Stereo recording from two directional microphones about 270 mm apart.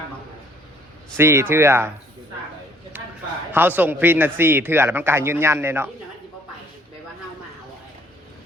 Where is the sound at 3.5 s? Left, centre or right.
Centre.